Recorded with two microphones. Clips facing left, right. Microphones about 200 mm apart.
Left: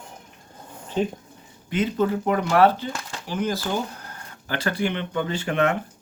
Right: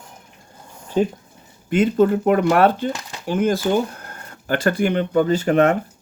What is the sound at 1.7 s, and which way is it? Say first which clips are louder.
Speech: right 7 dB; 50° right (ahead or behind).